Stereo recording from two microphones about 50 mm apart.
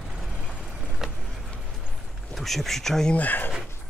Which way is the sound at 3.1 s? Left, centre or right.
Left.